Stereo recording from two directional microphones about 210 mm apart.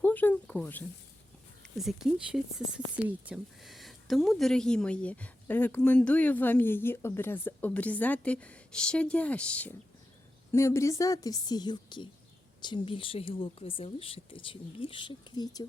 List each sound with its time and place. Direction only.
0.0 s a woman's voice: 10° left (ahead or behind)